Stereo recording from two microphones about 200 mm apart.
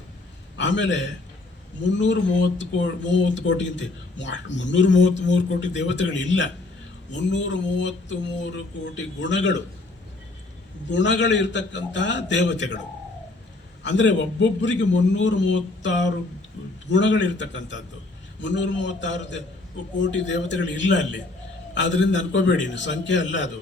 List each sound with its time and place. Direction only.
0.5 s a man's voice: 65° left (ahead or behind)
2.0 s speech: 65° left (ahead or behind)
10.8 s speech: 65° left (ahead or behind)
13.8 s speech: 65° left (ahead or behind)